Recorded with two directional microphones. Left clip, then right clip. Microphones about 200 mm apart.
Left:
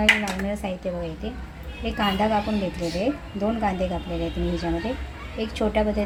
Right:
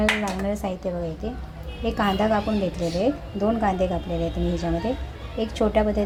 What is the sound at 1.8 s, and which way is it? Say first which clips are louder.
A woman's voice: right 1 dB; 15° right (ahead or behind).